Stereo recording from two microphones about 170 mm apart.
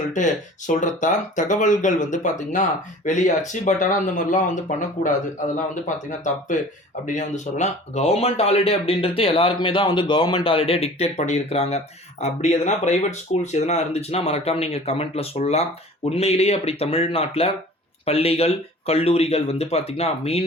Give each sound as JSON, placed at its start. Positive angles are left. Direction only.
{"t": 0.7, "sound": "speech", "side_deg": 45}